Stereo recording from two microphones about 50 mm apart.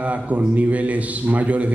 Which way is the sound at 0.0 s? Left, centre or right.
Right.